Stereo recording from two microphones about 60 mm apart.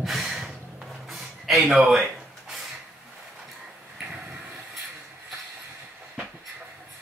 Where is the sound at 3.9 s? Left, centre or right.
Right.